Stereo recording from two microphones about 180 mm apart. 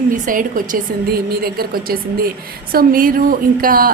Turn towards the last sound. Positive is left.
turn(degrees=-50)  # may be behind; listen again after turning